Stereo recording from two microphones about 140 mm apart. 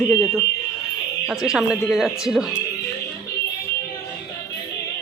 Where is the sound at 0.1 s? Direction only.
5° right (ahead or behind).